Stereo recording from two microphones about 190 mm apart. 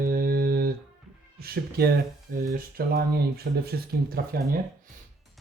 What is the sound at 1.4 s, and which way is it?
Speech, 55° right (ahead or behind).